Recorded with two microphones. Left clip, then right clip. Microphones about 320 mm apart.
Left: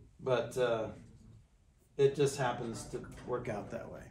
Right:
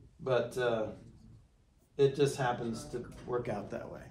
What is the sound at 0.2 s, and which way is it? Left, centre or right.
Speech, centre.